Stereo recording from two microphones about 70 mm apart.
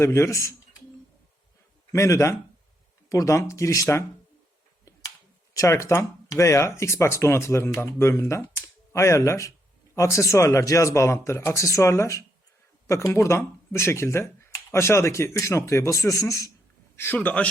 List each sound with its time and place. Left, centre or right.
0.0 s speech: left
1.9 s speech: left
5.5 s speech: left
7.9 s speech: left
8.6 s speech: left
17.2 s speech: centre